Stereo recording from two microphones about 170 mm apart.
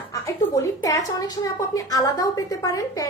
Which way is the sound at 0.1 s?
20° left (ahead or behind).